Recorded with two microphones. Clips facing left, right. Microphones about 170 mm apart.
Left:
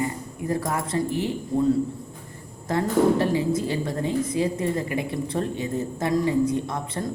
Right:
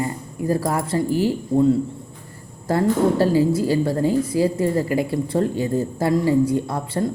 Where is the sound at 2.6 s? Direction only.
35° right (ahead or behind).